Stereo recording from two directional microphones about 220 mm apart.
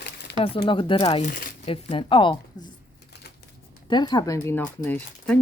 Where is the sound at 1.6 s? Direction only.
25° left (ahead or behind).